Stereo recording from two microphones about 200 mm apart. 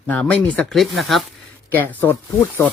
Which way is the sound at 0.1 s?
5° left (ahead or behind).